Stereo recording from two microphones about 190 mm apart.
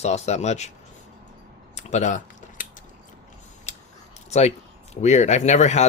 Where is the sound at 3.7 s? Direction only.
40° left (ahead or behind).